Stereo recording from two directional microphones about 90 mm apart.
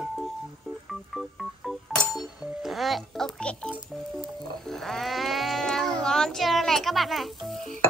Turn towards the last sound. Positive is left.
turn(degrees=0)  # may be behind; listen again after turning